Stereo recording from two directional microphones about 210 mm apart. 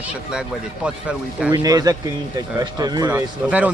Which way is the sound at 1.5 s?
20° right (ahead or behind).